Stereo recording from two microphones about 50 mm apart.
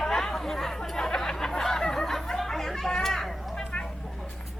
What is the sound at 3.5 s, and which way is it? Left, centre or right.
Vehicle, centre.